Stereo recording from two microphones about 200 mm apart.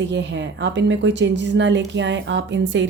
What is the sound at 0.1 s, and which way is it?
Speech, 60° right (ahead or behind).